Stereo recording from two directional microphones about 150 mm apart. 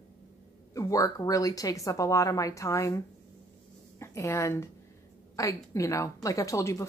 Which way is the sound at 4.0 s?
20° left (ahead or behind).